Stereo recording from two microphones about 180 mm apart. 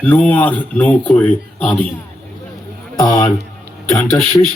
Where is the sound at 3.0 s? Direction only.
15° left (ahead or behind).